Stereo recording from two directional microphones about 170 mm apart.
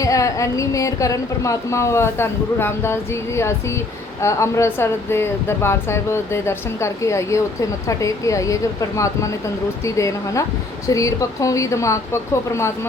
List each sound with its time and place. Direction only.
0.0 s a woman's voice: 20° left (ahead or behind)